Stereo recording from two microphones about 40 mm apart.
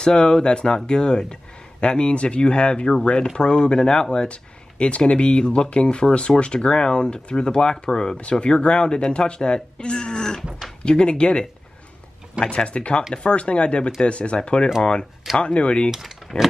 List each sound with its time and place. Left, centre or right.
0.0 s speech: centre
8.2 s speech: left
12.4 s speech: left
15.9 s speech: centre